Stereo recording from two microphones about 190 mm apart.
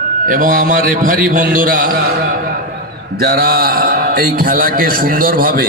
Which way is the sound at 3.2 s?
50° right (ahead or behind).